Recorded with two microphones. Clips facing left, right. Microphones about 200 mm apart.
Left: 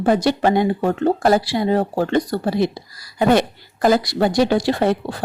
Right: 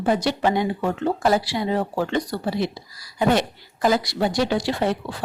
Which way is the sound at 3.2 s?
65° left (ahead or behind).